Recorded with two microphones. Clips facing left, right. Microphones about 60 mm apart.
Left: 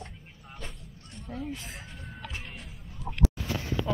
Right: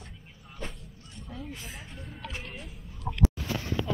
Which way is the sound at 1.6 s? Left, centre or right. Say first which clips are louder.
Even; centre.